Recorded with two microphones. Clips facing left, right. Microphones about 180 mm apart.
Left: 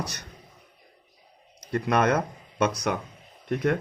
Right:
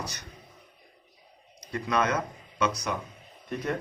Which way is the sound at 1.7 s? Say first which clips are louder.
Left 4 dB; 55° left (ahead or behind).